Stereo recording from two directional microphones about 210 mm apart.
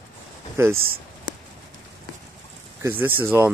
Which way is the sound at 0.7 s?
45° right (ahead or behind).